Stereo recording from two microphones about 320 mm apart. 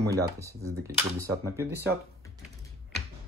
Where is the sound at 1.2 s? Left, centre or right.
Centre.